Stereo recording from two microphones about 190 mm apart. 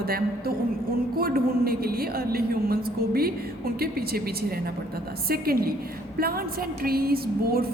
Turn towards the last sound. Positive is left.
turn(degrees=-55)  # may be behind; listen again after turning